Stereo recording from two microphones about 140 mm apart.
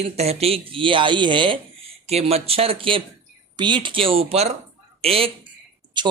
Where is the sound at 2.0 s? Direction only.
45° right (ahead or behind).